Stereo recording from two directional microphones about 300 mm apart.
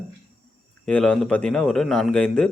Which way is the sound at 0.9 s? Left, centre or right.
Centre.